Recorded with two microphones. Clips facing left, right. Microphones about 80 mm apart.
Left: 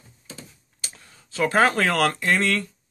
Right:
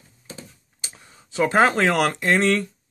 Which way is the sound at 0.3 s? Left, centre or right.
Right.